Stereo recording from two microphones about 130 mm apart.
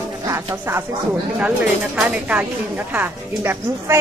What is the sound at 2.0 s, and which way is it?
Speech, 10° right (ahead or behind).